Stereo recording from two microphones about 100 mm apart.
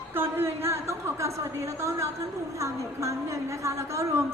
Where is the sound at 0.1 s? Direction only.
25° right (ahead or behind).